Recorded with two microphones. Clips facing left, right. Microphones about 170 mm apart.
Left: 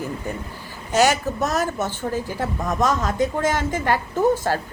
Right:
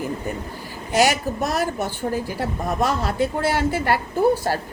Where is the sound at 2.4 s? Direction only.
35° right (ahead or behind).